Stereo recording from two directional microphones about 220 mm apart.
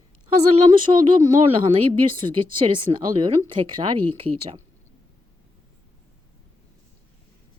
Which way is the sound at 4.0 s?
90° right.